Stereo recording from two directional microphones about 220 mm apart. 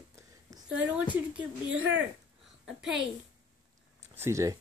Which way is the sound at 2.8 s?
Centre (ahead or behind).